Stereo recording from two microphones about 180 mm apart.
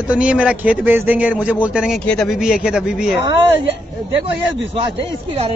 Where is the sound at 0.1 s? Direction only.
5° right (ahead or behind).